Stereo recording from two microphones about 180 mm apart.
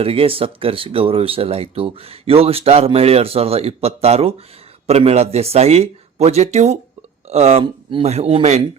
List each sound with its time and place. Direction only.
0.0 s speech: 30° right (ahead or behind)